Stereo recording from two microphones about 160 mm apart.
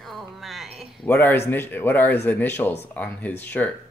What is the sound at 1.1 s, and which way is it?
Speech, 15° left (ahead or behind).